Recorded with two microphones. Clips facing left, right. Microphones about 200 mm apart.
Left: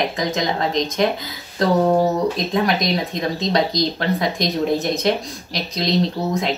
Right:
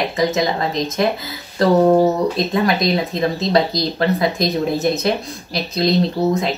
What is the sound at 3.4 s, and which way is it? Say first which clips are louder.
Speech: even; 5° right (ahead or behind).